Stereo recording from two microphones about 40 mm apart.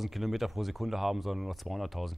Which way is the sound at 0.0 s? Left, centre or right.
Centre.